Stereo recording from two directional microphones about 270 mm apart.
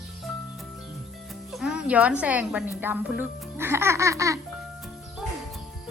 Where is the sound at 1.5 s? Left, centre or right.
Centre.